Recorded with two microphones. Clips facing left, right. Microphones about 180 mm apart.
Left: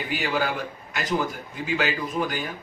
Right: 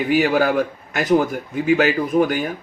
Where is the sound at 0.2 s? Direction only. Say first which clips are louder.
Right 7 dB; 50° right (ahead or behind).